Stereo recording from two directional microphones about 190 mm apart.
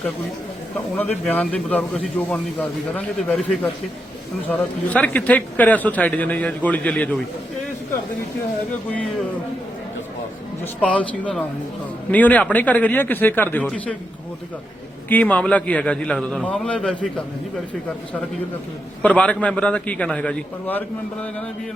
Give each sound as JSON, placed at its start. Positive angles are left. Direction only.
{"t": 0.9, "sound": "a man's voice", "side_deg": 10}
{"t": 10.8, "sound": "a man's voice", "side_deg": 5}
{"t": 15.1, "sound": "a man's voice", "side_deg": 10}
{"t": 19.0, "sound": "a man's voice", "side_deg": 5}